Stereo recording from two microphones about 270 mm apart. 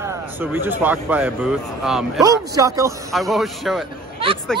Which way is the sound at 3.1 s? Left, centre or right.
Centre.